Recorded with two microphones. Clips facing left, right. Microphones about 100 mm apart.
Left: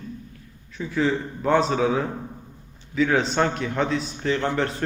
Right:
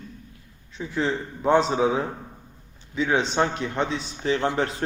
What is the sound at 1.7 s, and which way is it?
Speech, 25° right (ahead or behind).